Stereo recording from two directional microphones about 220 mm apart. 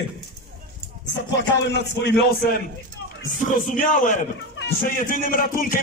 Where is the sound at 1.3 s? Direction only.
50° left (ahead or behind).